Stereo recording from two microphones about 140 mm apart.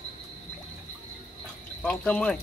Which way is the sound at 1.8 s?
5° left (ahead or behind).